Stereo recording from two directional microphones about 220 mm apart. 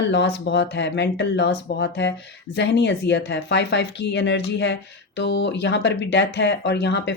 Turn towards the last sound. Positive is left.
turn(degrees=50)  # may be behind; listen again after turning